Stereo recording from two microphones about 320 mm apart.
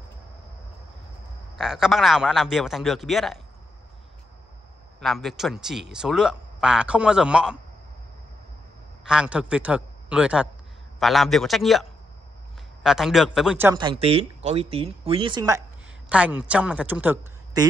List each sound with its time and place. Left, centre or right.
1.6 s speech: centre
5.0 s speech: centre
9.0 s speech: centre